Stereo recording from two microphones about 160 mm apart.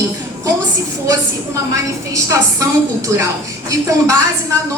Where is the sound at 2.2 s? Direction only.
20° right (ahead or behind).